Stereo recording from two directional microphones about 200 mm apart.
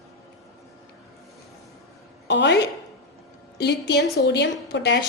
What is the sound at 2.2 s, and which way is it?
A woman's voice, 60° left (ahead or behind).